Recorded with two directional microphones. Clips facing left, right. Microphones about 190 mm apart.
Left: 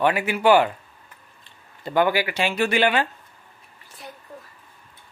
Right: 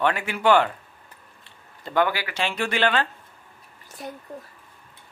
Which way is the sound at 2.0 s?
15° left (ahead or behind).